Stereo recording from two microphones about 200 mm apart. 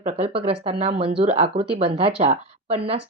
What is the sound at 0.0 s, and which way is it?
A woman's voice, 35° right (ahead or behind).